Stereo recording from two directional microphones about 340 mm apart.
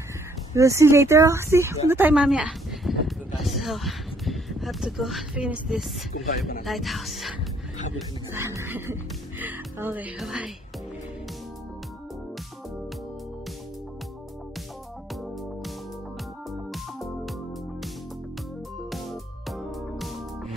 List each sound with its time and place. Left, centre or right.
0.6 s speech: centre
1.9 s a sound: centre
6.1 s speech: left
6.6 s speech: centre
8.4 s speech: centre
16.7 s music: centre
19.5 s music: centre